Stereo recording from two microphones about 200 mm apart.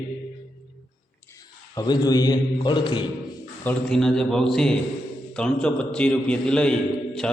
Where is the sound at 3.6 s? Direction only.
5° left (ahead or behind).